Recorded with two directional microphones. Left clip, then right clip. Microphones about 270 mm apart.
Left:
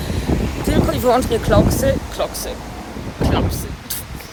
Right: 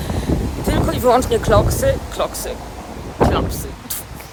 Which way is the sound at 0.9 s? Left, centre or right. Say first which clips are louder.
Right 3 dB; centre.